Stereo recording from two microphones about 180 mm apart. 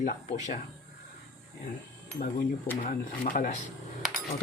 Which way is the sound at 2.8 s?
50° left (ahead or behind).